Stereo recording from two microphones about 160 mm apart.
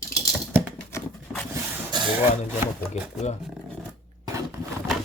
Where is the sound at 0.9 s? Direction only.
15° left (ahead or behind).